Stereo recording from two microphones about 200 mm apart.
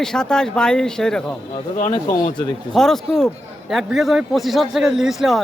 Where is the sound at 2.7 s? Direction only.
Centre (ahead or behind).